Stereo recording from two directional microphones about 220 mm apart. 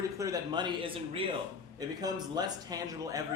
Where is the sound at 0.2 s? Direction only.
15° right (ahead or behind).